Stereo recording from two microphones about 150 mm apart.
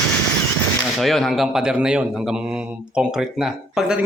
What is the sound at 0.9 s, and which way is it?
A man's voice, centre (ahead or behind).